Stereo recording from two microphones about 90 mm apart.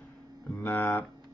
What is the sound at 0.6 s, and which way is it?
Speech, 20° left (ahead or behind).